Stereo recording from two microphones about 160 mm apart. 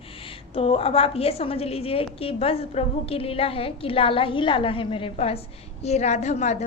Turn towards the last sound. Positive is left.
turn(degrees=45)  # may be behind; listen again after turning